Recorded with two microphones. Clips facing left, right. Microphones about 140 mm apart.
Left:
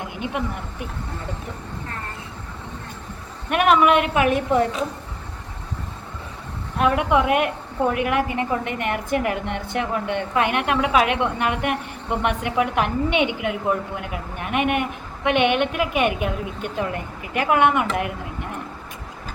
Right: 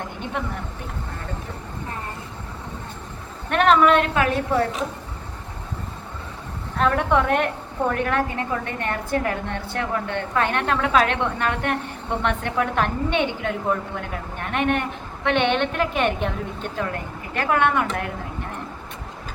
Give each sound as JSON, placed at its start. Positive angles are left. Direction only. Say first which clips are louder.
{"t": 3.5, "sound": "a woman's voice", "louder": "even", "side_deg": 15}
{"t": 6.7, "sound": "a woman's voice", "louder": "left 1 dB", "side_deg": 10}